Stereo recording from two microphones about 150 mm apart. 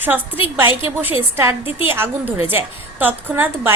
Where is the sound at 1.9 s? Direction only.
15° right (ahead or behind).